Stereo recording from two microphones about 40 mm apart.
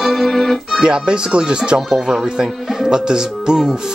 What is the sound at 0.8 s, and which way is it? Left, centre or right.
Speech, right.